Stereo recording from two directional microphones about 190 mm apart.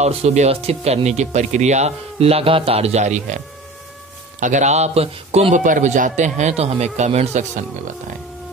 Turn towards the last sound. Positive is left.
turn(degrees=-40)  # may be behind; listen again after turning